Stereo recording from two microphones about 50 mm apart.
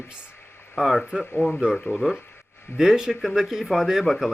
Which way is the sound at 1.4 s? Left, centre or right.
Left.